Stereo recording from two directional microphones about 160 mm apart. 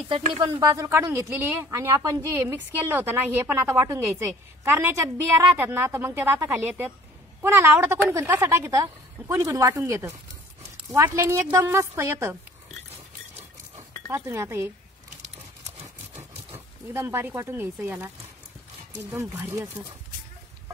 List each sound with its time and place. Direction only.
0.3 s speech: 25° right (ahead or behind)
13.7 s speech: 15° right (ahead or behind)
16.9 s speech: 15° right (ahead or behind)
19.3 s speech: 15° right (ahead or behind)